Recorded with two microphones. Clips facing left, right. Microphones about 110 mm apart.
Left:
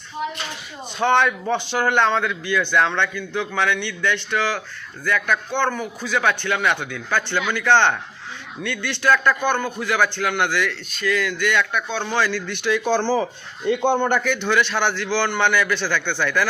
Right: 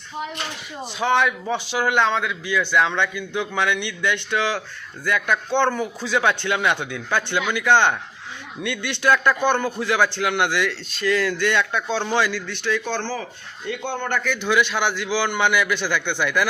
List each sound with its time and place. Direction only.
0.9 s a man's voice: 5° right (ahead or behind); by 12.1 s 30° right (ahead or behind)
12.1 s speech: 15° right (ahead or behind)
12.5 s a man's voice: 5° left (ahead or behind); by 14.2 s 20° left (ahead or behind)
14.4 s speech: 10° right (ahead or behind)